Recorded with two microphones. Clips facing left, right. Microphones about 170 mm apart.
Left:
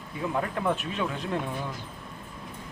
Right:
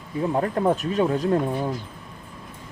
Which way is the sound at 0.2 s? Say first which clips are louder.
Right 7 dB; 35° right (ahead or behind).